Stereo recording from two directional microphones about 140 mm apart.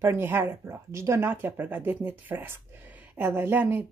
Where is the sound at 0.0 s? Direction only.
15° right (ahead or behind).